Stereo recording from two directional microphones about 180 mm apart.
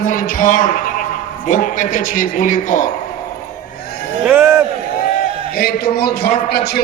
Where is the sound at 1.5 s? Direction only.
45° left (ahead or behind).